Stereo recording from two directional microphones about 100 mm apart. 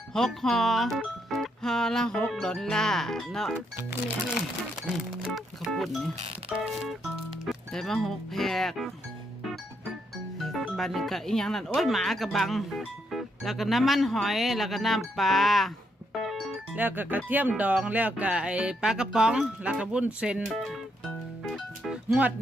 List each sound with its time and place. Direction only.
0.1 s speech: 5° left (ahead or behind)
4.9 s speech: centre (ahead or behind)
10.3 s speech: centre (ahead or behind)
16.2 s music: centre (ahead or behind)
16.7 s speech: 20° right (ahead or behind); by 21.9 s centre (ahead or behind)